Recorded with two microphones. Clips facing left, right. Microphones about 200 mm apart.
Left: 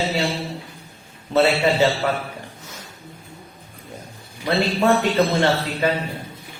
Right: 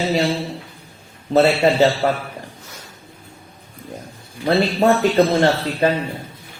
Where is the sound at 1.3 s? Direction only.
35° right (ahead or behind).